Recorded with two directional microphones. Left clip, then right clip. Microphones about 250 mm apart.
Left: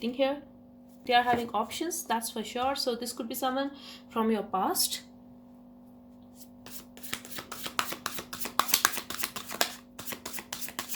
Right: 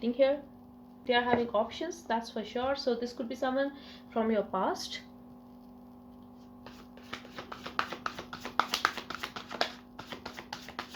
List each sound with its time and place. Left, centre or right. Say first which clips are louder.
0.0 s speech: right 2 dB; left
7.8 s shuffling cards: left 1 dB; left
10.1 s a sound: left 2 dB; left